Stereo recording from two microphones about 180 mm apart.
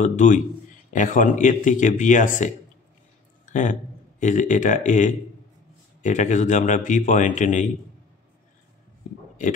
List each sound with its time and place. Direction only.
0.0 s a man's voice: 45° left (ahead or behind)
3.4 s a sound: 45° left (ahead or behind)
4.2 s a man's voice: 45° left (ahead or behind)